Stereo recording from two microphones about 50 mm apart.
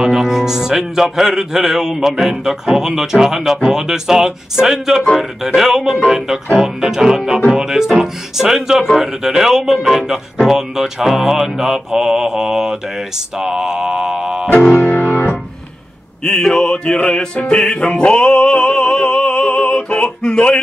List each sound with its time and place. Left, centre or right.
0.0 s speech: centre
14.7 s music: left
16.3 s music: centre